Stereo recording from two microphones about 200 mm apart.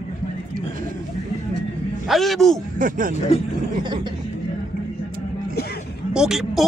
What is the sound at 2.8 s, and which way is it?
Speech, 40° right (ahead or behind).